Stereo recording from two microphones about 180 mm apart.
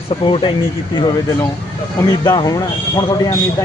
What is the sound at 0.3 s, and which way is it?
Speech, 30° left (ahead or behind).